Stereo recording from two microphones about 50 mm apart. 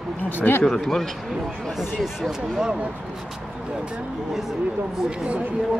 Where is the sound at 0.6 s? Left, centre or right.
Centre.